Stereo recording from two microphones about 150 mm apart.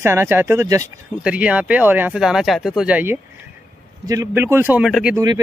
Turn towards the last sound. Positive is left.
turn(degrees=-25)  # may be behind; listen again after turning